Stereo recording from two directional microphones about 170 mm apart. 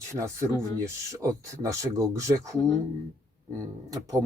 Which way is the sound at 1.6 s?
20° right (ahead or behind).